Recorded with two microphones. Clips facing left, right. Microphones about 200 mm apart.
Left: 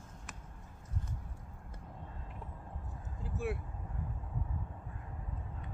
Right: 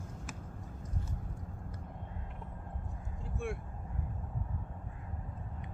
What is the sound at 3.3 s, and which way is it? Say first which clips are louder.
Vehicle: left 1 dB; 5° left (ahead or behind).